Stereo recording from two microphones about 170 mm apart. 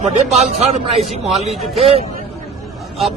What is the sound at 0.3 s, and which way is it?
Speech, 40° right (ahead or behind).